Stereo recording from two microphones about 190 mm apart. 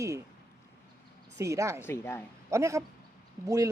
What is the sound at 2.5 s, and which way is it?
A woman's voice, 15° right (ahead or behind).